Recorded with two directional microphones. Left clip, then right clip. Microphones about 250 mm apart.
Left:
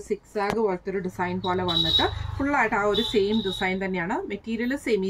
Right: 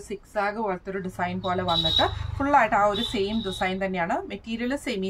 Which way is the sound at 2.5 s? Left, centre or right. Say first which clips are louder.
Right 3 dB; centre.